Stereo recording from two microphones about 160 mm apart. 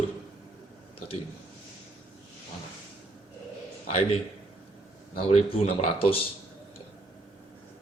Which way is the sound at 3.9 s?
40° left (ahead or behind).